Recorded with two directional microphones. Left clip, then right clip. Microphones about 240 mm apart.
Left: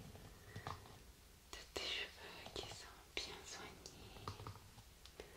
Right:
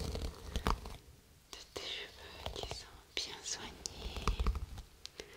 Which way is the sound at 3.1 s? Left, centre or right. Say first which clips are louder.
Right 8 dB; right.